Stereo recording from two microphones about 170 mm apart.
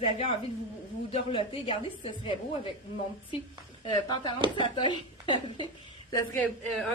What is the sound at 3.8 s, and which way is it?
A woman's voice, 25° left (ahead or behind).